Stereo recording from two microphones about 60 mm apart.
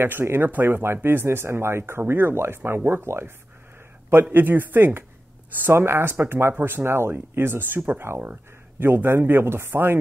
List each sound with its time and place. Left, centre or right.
0.0 s speech: right